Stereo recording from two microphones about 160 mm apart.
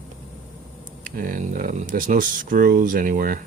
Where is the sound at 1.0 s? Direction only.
55° right (ahead or behind).